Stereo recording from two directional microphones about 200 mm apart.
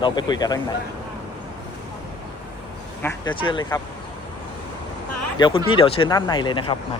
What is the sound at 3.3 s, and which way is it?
Speech, 20° left (ahead or behind).